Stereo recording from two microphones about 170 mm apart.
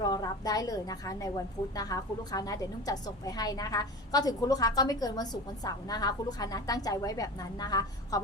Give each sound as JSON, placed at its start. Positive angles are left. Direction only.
{"t": 0.0, "sound": "a woman's voice", "side_deg": 20}